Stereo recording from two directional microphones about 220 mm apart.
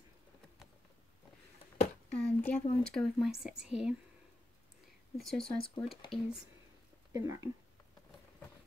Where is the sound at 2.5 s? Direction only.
5° left (ahead or behind).